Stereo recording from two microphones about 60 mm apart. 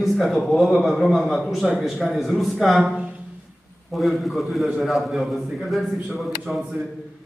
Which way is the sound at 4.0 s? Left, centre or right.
Centre.